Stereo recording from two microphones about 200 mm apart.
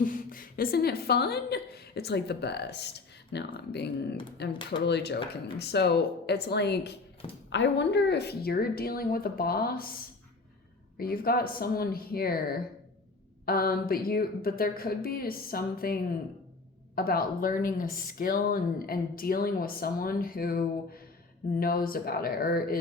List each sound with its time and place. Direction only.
0.0 s speech: 45° left (ahead or behind)